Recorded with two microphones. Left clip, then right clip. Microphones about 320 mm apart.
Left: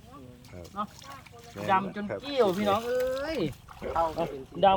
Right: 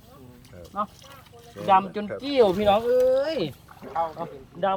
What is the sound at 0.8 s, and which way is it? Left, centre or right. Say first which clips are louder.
Speech: right 6 dB; right.